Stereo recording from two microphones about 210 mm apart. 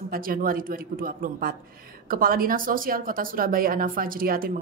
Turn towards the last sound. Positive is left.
turn(degrees=-45)  # may be behind; listen again after turning